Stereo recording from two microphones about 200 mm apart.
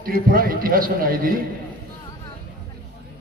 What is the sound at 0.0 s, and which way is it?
A man's voice, 45° right (ahead or behind).